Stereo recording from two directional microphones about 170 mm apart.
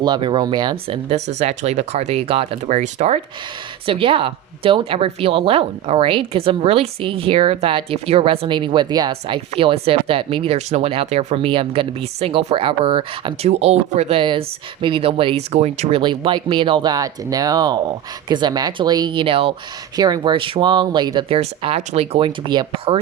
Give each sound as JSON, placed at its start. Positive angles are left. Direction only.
{"t": 0.0, "sound": "speech", "side_deg": -25}
{"t": 1.1, "sound": "a woman's voice", "side_deg": -40}
{"t": 16.0, "sound": "speech", "side_deg": -30}
{"t": 20.0, "sound": "speech", "side_deg": -25}